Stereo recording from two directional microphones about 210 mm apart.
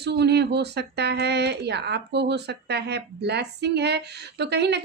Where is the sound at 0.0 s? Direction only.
50° right (ahead or behind).